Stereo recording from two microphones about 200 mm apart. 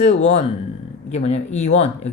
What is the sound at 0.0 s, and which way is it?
Speech, 35° left (ahead or behind).